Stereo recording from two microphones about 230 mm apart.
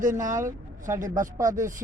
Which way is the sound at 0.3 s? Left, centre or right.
Right.